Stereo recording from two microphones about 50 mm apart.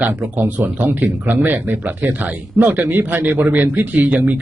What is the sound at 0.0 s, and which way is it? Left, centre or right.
Speech, right.